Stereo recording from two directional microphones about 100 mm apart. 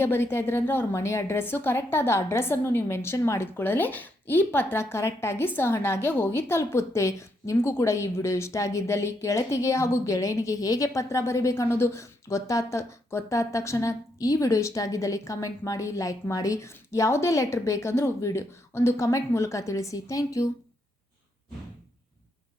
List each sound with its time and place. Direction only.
0.0 s a woman's voice: 25° left (ahead or behind)